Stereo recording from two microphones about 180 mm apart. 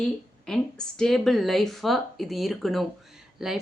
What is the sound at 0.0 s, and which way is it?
Speech, 5° left (ahead or behind).